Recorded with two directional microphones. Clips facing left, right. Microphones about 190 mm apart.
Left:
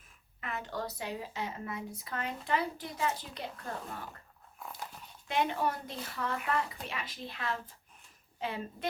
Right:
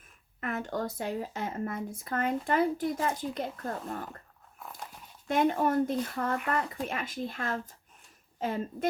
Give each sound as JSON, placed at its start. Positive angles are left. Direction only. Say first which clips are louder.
{"t": 0.3, "sound": "speech", "louder": "right 5 dB", "side_deg": -50}
{"t": 5.3, "sound": "speech", "louder": "right 6 dB", "side_deg": -50}